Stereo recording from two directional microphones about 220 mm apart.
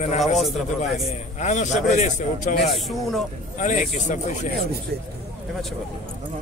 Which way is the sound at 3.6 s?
35° left (ahead or behind).